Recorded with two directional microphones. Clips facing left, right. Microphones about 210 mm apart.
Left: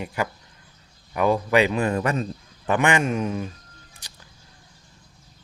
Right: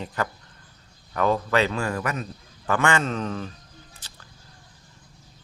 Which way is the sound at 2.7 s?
15° left (ahead or behind).